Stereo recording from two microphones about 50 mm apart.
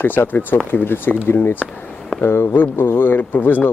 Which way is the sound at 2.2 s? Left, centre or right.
Left.